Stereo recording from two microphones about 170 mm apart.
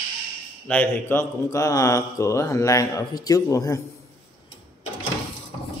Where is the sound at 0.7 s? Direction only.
10° left (ahead or behind).